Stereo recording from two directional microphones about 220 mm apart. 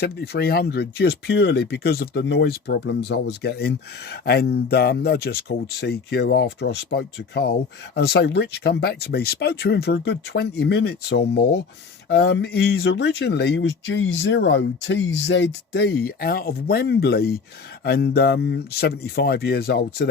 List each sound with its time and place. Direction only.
0.0 s speech: 45° left (ahead or behind)